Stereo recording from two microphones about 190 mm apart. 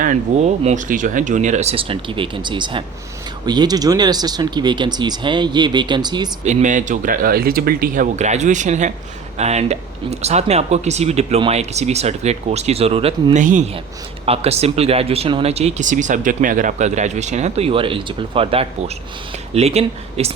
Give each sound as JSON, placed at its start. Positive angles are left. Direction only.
{"t": 0.0, "sound": "speech", "side_deg": -40}
{"t": 6.4, "sound": "speech", "side_deg": -40}